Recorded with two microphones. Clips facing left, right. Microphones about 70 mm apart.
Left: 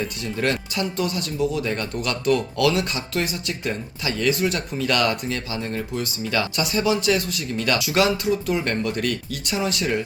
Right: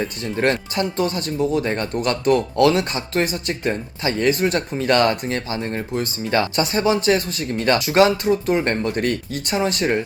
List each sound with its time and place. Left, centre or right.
0.0 s speech: right